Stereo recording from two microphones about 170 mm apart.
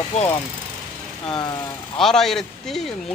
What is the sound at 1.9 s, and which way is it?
Speech, centre (ahead or behind).